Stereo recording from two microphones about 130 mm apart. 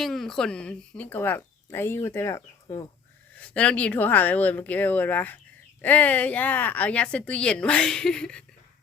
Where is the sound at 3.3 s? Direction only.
10° left (ahead or behind).